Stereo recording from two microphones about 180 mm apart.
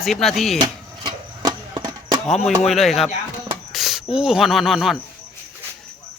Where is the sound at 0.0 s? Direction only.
Centre (ahead or behind).